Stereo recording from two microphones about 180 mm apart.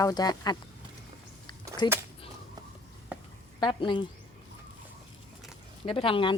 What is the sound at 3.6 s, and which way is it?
Speech, 25° left (ahead or behind).